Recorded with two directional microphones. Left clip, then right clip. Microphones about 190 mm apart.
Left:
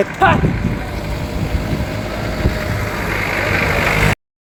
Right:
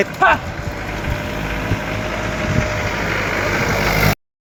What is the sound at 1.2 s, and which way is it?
Vehicle, 20° right (ahead or behind).